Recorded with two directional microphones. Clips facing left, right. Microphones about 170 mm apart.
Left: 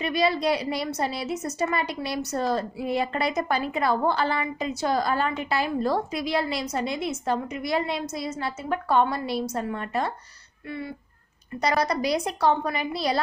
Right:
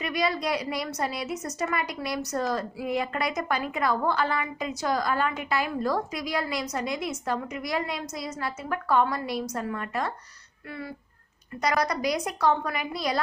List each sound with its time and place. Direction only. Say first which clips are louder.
0.0 s a woman's voice: left 4 dB; 30° left (ahead or behind)
11.6 s a woman's voice: left 2 dB; 30° left (ahead or behind)